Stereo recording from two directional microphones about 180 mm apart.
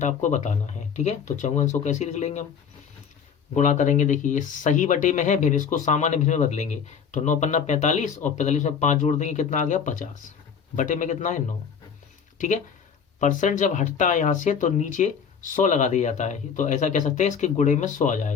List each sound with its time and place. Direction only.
0.0 s speech: 40° left (ahead or behind)
3.5 s speech: 45° left (ahead or behind)
13.1 s speech: 45° left (ahead or behind)